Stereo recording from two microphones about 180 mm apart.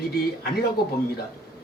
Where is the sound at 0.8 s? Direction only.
60° left (ahead or behind).